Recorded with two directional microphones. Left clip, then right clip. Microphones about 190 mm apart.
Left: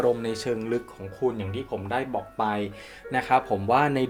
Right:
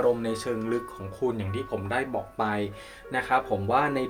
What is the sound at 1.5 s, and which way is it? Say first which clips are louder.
Speech: even; 10° left (ahead or behind).